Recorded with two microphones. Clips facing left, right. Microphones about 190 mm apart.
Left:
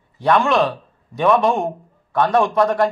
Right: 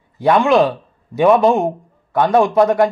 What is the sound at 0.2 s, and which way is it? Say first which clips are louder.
Speech: right 4 dB; 20° right (ahead or behind).